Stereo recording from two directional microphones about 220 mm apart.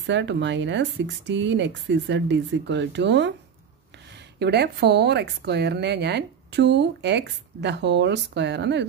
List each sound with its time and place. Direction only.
0.0 s speech: 55° right (ahead or behind)
4.4 s a woman's voice: 50° right (ahead or behind)